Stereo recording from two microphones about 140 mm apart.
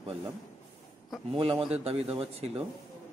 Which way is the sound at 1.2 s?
40° right (ahead or behind).